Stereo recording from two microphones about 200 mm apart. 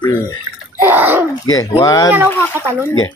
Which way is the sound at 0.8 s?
10° right (ahead or behind).